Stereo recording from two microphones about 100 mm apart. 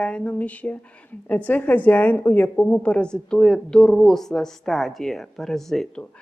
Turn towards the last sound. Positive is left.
turn(degrees=5)  # may be behind; listen again after turning